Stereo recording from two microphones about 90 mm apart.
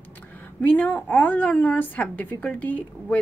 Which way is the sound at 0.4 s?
20° left (ahead or behind).